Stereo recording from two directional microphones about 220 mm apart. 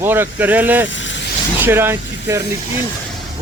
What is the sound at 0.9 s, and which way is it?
Speech, 55° left (ahead or behind).